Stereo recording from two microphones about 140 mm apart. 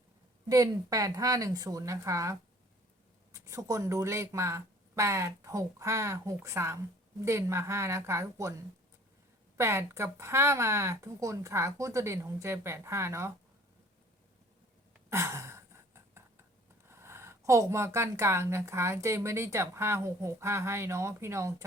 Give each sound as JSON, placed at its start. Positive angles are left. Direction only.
{"t": 0.4, "sound": "speech", "side_deg": -25}
{"t": 9.6, "sound": "speech", "side_deg": -20}
{"t": 15.1, "sound": "sigh", "side_deg": -20}
{"t": 16.9, "sound": "speech", "side_deg": -20}